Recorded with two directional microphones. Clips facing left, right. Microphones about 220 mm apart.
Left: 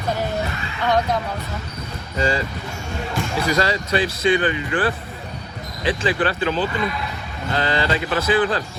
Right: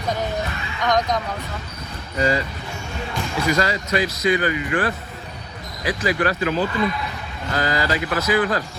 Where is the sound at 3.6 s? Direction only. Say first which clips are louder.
Left 1 dB; 30° left (ahead or behind).